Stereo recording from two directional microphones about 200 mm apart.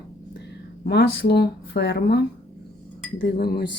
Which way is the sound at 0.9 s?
55° left (ahead or behind).